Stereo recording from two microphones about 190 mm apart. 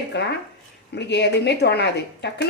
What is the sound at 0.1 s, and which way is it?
A woman's voice, 60° left (ahead or behind).